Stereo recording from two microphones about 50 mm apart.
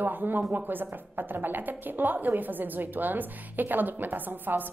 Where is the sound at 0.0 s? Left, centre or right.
Right.